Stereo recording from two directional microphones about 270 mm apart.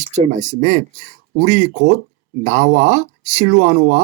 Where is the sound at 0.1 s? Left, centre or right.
Right.